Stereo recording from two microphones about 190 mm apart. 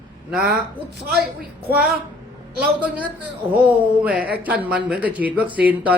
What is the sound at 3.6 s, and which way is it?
Speech, 25° right (ahead or behind).